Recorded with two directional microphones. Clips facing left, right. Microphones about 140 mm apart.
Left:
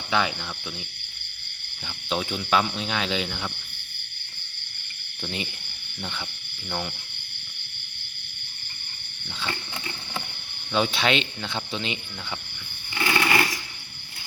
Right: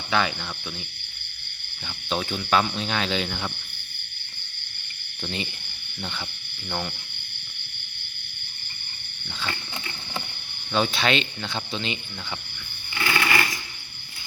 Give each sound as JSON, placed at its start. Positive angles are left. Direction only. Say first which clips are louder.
{"t": 0.1, "sound": "speech", "louder": "right 1 dB", "side_deg": 10}
{"t": 2.0, "sound": "speech", "louder": "even", "side_deg": 10}
{"t": 3.2, "sound": "speech", "louder": "right 2 dB", "side_deg": 0}
{"t": 5.2, "sound": "speech", "louder": "right 1 dB", "side_deg": 10}
{"t": 6.7, "sound": "speech", "louder": "right 1 dB", "side_deg": 0}
{"t": 9.4, "sound": "wild animals", "louder": "even", "side_deg": 20}
{"t": 10.7, "sound": "speech", "louder": "even", "side_deg": 15}
{"t": 12.9, "sound": "a sound", "louder": "left 1 dB", "side_deg": 15}